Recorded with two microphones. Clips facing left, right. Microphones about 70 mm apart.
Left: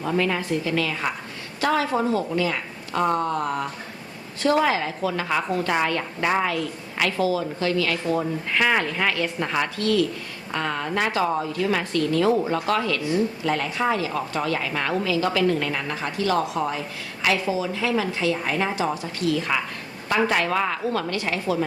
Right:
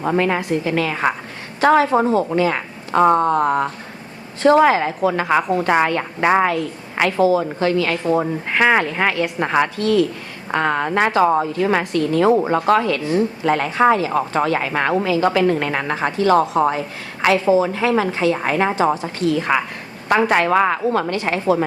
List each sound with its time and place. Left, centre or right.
0.0 s a woman's voice: right
10.5 s a woman's voice: right
18.3 s speech: right
19.0 s a woman's voice: right